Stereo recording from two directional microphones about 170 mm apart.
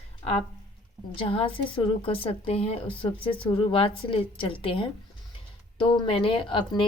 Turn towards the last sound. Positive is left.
turn(degrees=30)  # may be behind; listen again after turning